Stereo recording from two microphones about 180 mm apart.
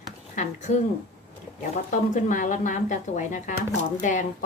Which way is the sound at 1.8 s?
45° left (ahead or behind).